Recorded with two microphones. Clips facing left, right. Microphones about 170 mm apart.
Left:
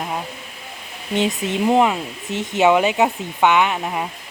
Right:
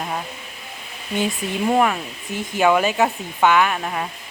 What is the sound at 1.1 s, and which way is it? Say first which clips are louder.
Speech: left 3 dB; 20° left (ahead or behind).